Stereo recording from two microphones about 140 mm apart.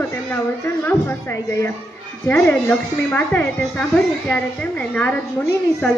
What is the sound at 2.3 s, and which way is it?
A woman's voice, 5° left (ahead or behind).